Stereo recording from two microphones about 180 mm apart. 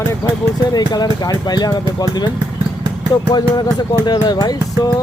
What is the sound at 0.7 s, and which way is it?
Speech, 20° left (ahead or behind).